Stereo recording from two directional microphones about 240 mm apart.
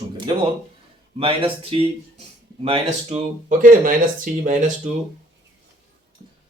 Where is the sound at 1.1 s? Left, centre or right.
Right.